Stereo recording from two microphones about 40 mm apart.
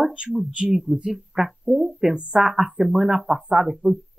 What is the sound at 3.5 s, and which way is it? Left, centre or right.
Speech, centre.